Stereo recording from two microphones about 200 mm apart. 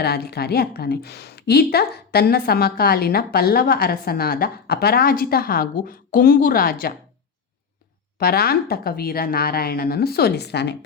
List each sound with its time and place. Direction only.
0.0 s a woman's voice: 50° left (ahead or behind)
8.2 s a woman's voice: 50° left (ahead or behind)